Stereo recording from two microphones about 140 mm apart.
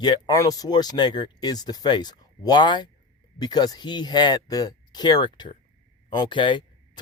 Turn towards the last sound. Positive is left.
turn(degrees=35)  # may be behind; listen again after turning